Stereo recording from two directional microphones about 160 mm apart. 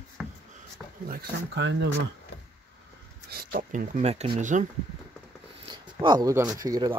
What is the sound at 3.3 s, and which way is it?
Speech, 65° right (ahead or behind).